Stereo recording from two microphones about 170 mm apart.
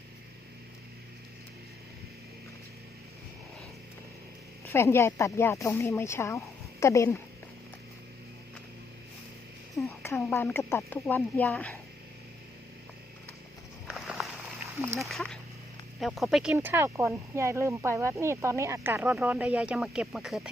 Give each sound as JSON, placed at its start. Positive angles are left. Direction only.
{"t": 4.7, "sound": "speech", "side_deg": 15}
{"t": 9.8, "sound": "a sound", "side_deg": 0}
{"t": 10.3, "sound": "speech", "side_deg": 10}
{"t": 13.8, "sound": "walk", "side_deg": 0}
{"t": 14.9, "sound": "speech", "side_deg": 0}
{"t": 16.6, "sound": "speech", "side_deg": -15}